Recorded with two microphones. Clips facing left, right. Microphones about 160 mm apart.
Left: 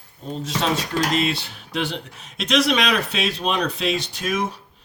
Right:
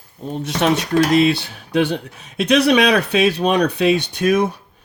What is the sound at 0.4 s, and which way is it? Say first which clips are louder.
Speech: right 6 dB; 70° right (ahead or behind).